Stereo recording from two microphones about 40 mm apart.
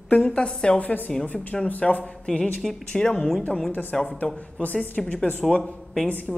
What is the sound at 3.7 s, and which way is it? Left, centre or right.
Speech, left.